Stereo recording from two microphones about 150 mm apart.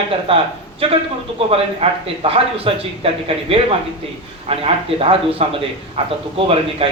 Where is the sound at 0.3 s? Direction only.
40° right (ahead or behind).